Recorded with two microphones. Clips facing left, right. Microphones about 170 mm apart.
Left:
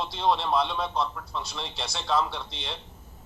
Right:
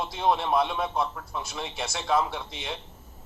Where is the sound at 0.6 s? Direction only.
5° right (ahead or behind).